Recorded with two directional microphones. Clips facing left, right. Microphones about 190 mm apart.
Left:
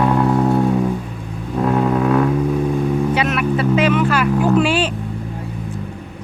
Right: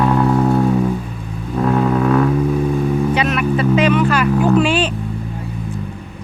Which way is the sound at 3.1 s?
5° left (ahead or behind).